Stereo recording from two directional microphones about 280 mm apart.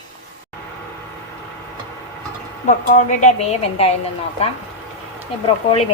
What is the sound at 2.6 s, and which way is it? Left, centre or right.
Speech, left.